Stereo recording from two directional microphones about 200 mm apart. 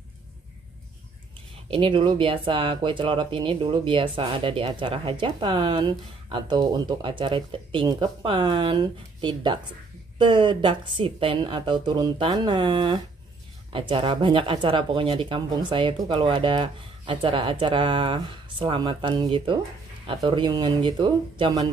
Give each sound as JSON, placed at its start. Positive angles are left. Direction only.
{"t": 1.7, "sound": "speech", "side_deg": -25}